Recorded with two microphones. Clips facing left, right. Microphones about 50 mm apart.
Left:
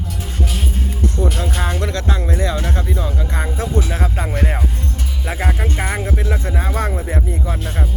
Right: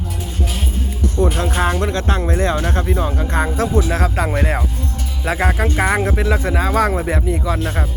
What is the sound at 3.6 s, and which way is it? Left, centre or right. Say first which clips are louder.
Speech: right 2 dB; right.